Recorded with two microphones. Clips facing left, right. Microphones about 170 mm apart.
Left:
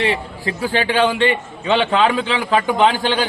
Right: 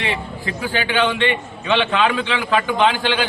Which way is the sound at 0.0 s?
35° left (ahead or behind).